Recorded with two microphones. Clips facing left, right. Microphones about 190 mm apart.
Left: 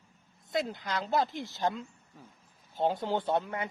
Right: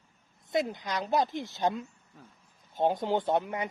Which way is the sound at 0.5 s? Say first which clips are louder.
Right 2 dB; 20° right (ahead or behind).